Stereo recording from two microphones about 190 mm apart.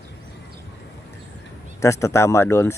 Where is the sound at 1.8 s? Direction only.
15° left (ahead or behind).